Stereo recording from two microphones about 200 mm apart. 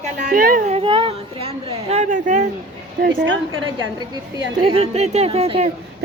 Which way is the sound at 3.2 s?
75° right (ahead or behind).